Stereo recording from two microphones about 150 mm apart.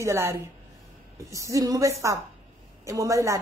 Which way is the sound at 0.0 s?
15° right (ahead or behind).